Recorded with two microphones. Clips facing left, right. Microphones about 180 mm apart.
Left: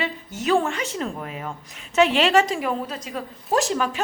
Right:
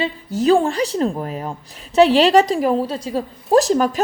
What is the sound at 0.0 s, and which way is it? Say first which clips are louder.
A woman's voice: right 8 dB; 35° right (ahead or behind).